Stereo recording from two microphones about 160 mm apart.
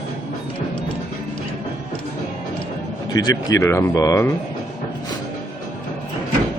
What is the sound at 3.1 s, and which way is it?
Speech, 25° left (ahead or behind).